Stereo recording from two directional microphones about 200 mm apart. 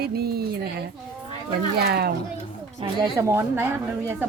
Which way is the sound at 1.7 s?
55° right (ahead or behind).